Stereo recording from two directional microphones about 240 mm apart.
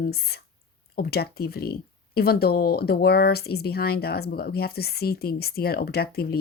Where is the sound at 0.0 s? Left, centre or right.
Left.